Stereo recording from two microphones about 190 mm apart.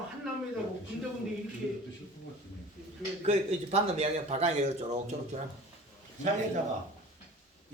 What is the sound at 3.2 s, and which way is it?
A man's voice, 35° right (ahead or behind).